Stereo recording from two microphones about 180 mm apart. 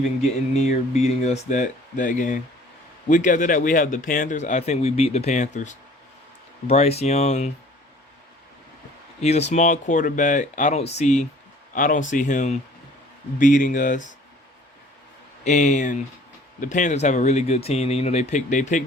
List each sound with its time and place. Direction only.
0.0 s speech: 40° left (ahead or behind)
9.2 s speech: 35° left (ahead or behind)
15.4 s speech: 40° left (ahead or behind)